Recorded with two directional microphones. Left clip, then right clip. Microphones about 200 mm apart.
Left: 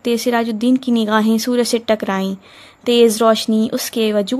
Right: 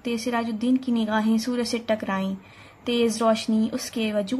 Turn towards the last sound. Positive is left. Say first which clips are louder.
# left 9 dB
turn(degrees=45)  # may be behind; listen again after turning